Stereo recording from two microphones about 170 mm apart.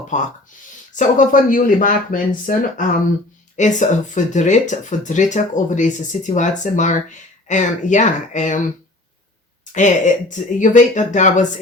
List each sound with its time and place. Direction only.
0.1 s speech: 45° left (ahead or behind)
9.7 s speech: 45° left (ahead or behind)